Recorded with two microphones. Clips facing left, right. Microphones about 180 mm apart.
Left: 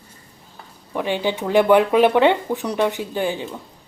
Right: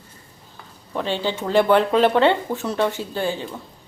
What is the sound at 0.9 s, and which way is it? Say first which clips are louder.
Speech: left 2 dB; 15° left (ahead or behind).